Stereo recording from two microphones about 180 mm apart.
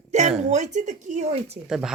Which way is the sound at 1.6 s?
5° right (ahead or behind).